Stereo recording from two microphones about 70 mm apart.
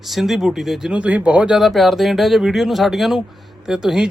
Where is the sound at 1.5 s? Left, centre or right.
Centre.